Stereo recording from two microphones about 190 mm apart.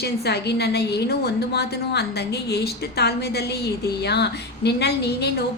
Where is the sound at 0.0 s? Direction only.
60° left (ahead or behind).